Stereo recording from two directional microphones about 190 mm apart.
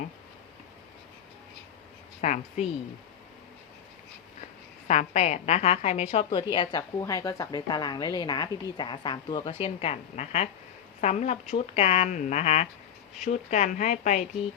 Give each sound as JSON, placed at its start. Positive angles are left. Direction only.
{"t": 2.2, "sound": "speech", "side_deg": 40}
{"t": 4.9, "sound": "a woman's voice", "side_deg": 35}